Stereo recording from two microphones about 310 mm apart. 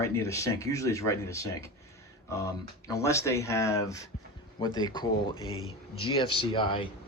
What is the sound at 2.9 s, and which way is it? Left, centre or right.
Speech, centre.